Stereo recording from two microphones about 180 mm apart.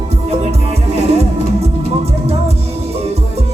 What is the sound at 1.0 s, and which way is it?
Music, 35° right (ahead or behind).